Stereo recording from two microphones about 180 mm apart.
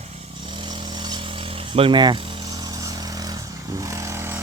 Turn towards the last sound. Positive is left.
turn(degrees=-15)  # may be behind; listen again after turning